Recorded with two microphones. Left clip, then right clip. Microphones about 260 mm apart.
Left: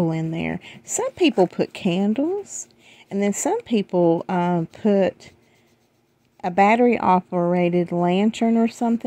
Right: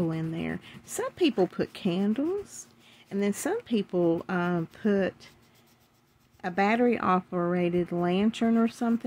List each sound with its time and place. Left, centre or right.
0.0 s speech: left
6.4 s speech: left